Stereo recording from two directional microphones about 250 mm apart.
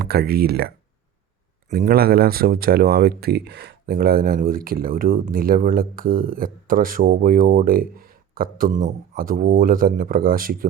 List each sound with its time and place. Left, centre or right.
0.0 s speech: right
1.7 s speech: right